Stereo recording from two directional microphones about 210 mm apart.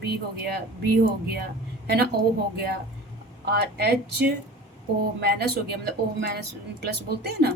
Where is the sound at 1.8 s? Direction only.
50° right (ahead or behind).